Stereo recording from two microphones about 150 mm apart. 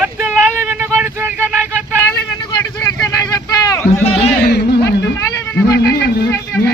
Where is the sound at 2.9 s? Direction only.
20° left (ahead or behind).